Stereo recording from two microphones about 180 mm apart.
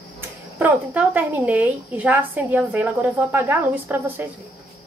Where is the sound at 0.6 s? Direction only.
10° right (ahead or behind).